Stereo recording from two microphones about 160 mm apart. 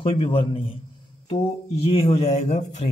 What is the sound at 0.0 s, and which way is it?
Speech, 35° left (ahead or behind).